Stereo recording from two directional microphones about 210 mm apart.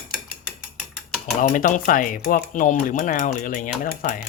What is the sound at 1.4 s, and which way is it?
Typewriter, 40° left (ahead or behind).